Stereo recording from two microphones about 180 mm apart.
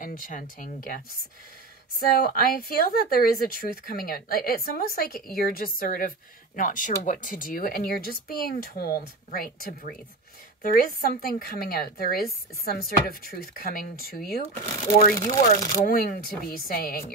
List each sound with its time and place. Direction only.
0.0 s a woman's voice: 50° left (ahead or behind)
15.1 s speech: 20° left (ahead or behind)
15.8 s a woman's voice: 50° left (ahead or behind)